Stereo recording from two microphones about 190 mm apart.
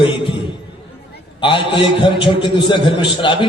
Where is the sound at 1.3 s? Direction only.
25° left (ahead or behind).